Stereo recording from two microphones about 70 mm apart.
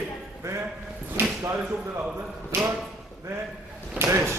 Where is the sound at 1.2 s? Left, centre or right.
Right.